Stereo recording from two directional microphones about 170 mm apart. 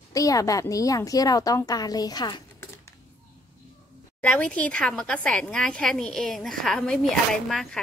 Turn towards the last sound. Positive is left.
turn(degrees=0)  # may be behind; listen again after turning